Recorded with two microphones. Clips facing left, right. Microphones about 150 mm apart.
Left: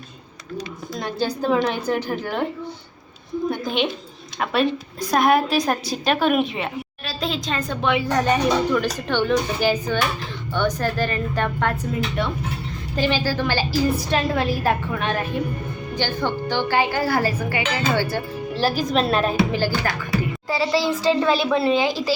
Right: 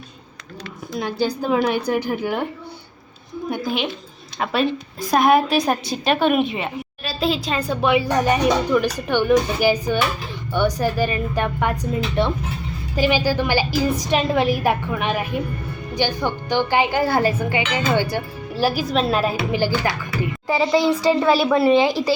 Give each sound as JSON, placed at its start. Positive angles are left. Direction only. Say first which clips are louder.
{"t": 0.9, "sound": "a woman's voice", "louder": "right 3 dB", "side_deg": -10}
{"t": 4.4, "sound": "a woman's voice", "louder": "even", "side_deg": 0}
{"t": 12.2, "sound": "speech", "louder": "right 6 dB", "side_deg": -25}
{"t": 13.0, "sound": "a woman's voice", "louder": "right 3 dB", "side_deg": -15}